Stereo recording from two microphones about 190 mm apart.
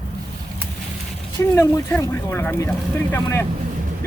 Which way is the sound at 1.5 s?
15° left (ahead or behind).